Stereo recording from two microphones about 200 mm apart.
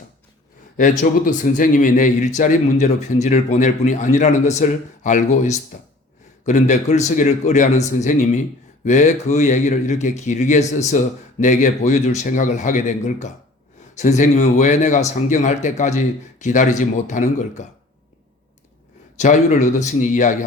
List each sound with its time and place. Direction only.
0.8 s a man's voice: 40° left (ahead or behind)
19.1 s a man's voice: 35° left (ahead or behind)